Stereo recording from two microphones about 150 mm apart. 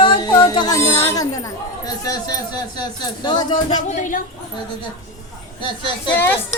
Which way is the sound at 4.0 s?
60° left (ahead or behind).